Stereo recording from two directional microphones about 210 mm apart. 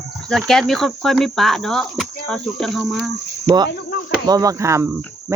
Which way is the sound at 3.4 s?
20° right (ahead or behind).